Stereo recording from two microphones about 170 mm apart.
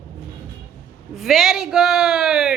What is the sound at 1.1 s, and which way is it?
A woman's voice, centre (ahead or behind).